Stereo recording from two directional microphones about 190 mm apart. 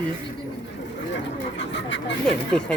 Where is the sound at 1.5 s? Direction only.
70° left (ahead or behind).